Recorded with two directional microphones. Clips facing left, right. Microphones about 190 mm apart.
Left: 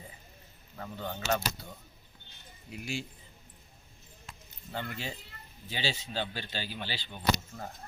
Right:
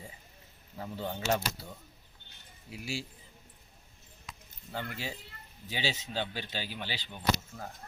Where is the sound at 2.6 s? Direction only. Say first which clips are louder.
Left 1 dB; 5° right (ahead or behind).